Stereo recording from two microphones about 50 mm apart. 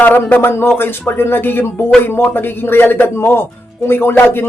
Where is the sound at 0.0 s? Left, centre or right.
Left.